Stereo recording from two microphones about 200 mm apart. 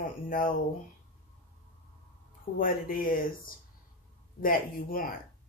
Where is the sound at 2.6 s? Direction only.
45° left (ahead or behind).